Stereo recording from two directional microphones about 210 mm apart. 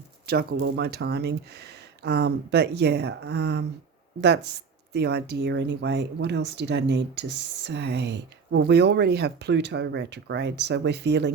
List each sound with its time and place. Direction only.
0.3 s speech: 50° right (ahead or behind)